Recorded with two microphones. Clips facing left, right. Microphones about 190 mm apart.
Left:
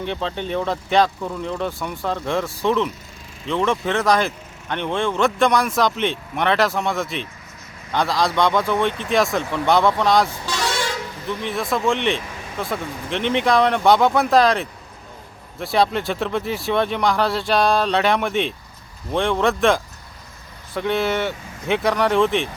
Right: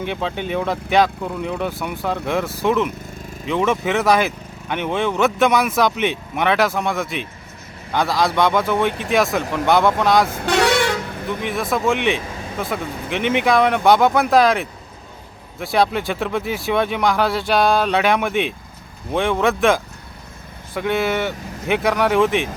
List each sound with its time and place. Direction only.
0.0 s speech: 10° right (ahead or behind)
10.2 s vehicle: 55° right (ahead or behind)
11.4 s speech: centre (ahead or behind)